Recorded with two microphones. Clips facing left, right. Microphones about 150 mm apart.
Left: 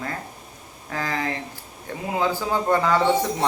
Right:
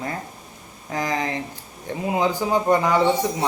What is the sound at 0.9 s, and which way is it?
A man's voice, 15° right (ahead or behind).